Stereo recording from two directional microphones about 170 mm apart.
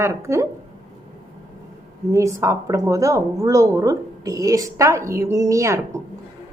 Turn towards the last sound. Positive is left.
turn(degrees=-15)  # may be behind; listen again after turning